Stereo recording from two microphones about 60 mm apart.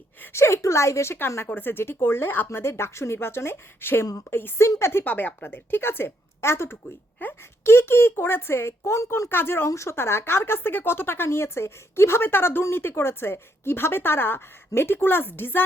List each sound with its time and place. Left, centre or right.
0.3 s speech: left
1.5 s speech: left
5.0 s speech: left
7.2 s speech: left
7.6 s speech: left
9.3 s speech: left
9.6 s speech: left